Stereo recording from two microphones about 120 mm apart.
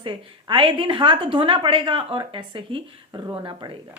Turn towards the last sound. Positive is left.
turn(degrees=-30)  # may be behind; listen again after turning